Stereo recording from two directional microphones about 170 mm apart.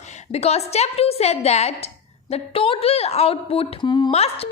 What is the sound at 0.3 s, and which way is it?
A woman's voice, 40° left (ahead or behind).